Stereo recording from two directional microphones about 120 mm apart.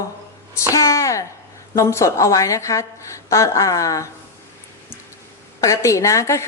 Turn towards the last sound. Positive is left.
turn(degrees=25)  # may be behind; listen again after turning